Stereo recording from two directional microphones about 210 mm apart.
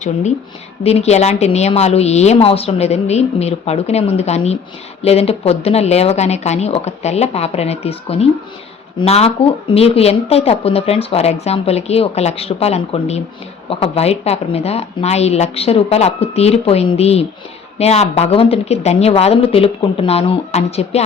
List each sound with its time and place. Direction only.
0.0 s a woman's voice: 35° left (ahead or behind)